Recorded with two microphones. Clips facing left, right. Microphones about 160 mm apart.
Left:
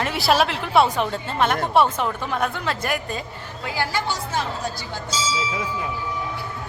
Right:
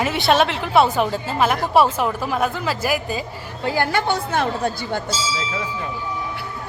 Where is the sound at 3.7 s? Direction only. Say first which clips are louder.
Right 5 dB; 55° right (ahead or behind).